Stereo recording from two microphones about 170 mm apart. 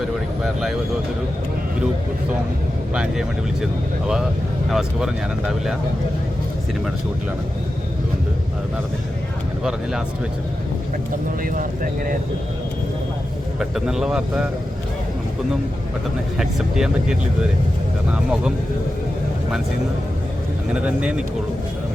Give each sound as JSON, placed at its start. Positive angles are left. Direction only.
{"t": 2.9, "sound": "speech", "side_deg": -5}
{"t": 4.7, "sound": "speech", "side_deg": -5}
{"t": 11.4, "sound": "speech", "side_deg": -55}
{"t": 13.6, "sound": "speech", "side_deg": -5}
{"t": 16.4, "sound": "speech", "side_deg": -5}
{"t": 20.7, "sound": "speech", "side_deg": -5}